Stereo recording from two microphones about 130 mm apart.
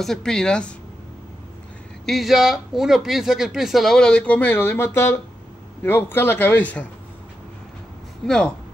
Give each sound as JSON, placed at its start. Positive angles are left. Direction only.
{"t": 0.0, "sound": "speech", "side_deg": 5}
{"t": 2.0, "sound": "speech", "side_deg": 0}
{"t": 8.3, "sound": "speech", "side_deg": 5}